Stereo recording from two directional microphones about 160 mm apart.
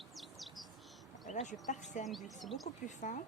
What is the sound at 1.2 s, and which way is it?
Speech, 50° left (ahead or behind).